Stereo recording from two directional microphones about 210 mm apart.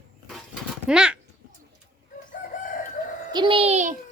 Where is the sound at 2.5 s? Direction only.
35° left (ahead or behind).